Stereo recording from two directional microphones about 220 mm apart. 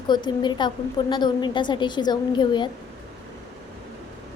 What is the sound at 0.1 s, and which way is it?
A woman's voice, 20° left (ahead or behind).